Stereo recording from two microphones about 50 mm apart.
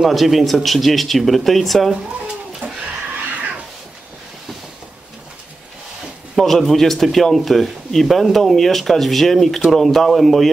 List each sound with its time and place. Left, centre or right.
0.0 s speech: centre
2.0 s cat: centre
6.3 s speech: centre